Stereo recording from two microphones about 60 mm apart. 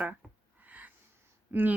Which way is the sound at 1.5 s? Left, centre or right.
Right.